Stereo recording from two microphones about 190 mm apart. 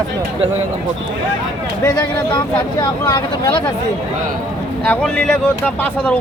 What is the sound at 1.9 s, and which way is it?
Speech, 20° left (ahead or behind).